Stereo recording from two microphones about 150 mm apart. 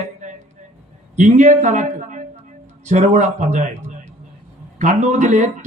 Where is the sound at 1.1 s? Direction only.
55° right (ahead or behind).